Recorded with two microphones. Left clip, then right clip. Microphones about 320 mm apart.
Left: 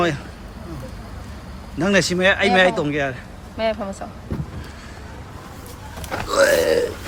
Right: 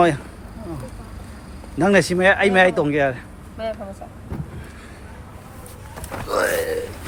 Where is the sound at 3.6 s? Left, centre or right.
Left.